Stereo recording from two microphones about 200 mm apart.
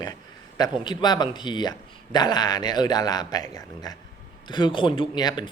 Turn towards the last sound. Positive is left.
turn(degrees=20)  # may be behind; listen again after turning